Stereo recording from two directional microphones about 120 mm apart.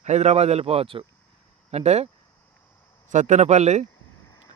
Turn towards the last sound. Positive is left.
turn(degrees=-70)  # may be behind; listen again after turning